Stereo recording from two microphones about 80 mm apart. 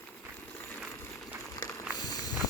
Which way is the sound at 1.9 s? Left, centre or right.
Left.